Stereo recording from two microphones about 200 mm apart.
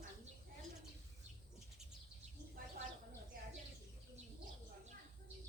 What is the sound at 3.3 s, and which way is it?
Bird, 45° right (ahead or behind).